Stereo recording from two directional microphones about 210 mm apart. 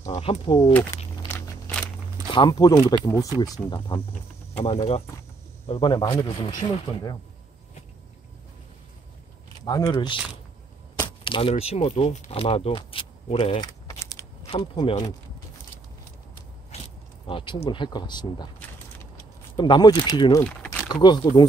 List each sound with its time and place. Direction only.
0.0 s a sound: 15° left (ahead or behind)
1.3 s walk: 5° left (ahead or behind)
2.3 s speech: 20° left (ahead or behind)
9.7 s speech: 20° left (ahead or behind)
11.2 s speech: 25° left (ahead or behind)
17.3 s speech: 25° left (ahead or behind)
19.5 s speech: 20° left (ahead or behind)
20.4 s a sound: 5° left (ahead or behind)
20.9 s speech: 20° left (ahead or behind)